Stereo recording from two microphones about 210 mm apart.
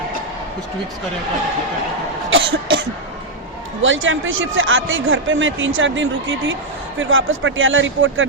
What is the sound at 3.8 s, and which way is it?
A man's voice, 70° right (ahead or behind).